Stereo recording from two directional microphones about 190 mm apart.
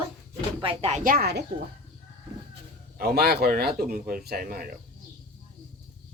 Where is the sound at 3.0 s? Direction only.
55° right (ahead or behind).